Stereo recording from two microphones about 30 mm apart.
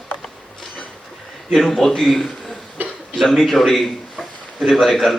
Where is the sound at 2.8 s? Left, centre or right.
Right.